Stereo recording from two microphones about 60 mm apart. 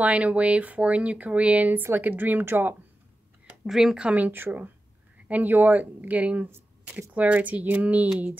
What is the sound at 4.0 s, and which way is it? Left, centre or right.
Speech, right.